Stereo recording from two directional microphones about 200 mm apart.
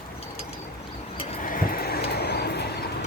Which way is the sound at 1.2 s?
40° left (ahead or behind).